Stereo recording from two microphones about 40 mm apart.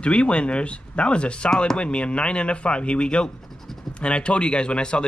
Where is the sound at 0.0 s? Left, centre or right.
Left.